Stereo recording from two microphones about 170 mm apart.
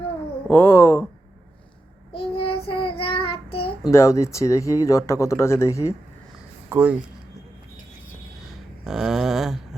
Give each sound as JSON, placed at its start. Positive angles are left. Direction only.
{"t": 0.4, "sound": "speech", "side_deg": 15}
{"t": 2.1, "sound": "child singing", "side_deg": 35}
{"t": 3.9, "sound": "speech", "side_deg": 15}
{"t": 6.7, "sound": "speech", "side_deg": -10}
{"t": 8.4, "sound": "a sound", "side_deg": -5}